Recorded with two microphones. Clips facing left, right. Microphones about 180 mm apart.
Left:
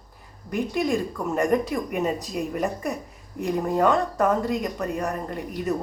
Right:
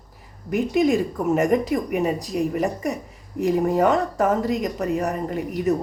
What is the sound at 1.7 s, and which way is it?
Speech, centre (ahead or behind).